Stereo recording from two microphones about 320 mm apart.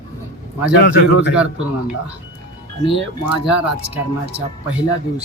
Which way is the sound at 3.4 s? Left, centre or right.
Centre.